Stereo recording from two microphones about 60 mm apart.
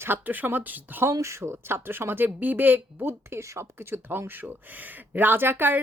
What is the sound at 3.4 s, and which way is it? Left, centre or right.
Speech, right.